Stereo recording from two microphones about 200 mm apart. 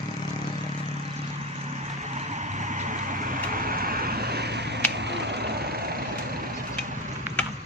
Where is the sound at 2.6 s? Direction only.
35° right (ahead or behind); by 5.4 s 60° right (ahead or behind).